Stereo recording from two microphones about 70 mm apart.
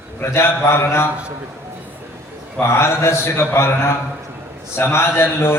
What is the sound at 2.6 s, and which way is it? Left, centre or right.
A man's voice, left.